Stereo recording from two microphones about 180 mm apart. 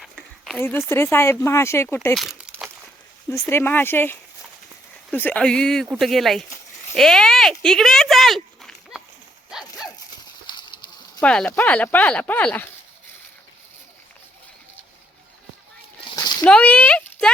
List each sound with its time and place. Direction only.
0.0 s a sound: centre (ahead or behind)
0.6 s speech: 15° left (ahead or behind)
2.1 s crumpling: centre (ahead or behind)
3.2 s speech: 15° left (ahead or behind)
9.5 s dog: centre (ahead or behind)
10.4 s horse: 25° left (ahead or behind)
11.2 s speech: 5° left (ahead or behind)
16.0 s a sound: 25° left (ahead or behind)
16.5 s a sound: 5° left (ahead or behind)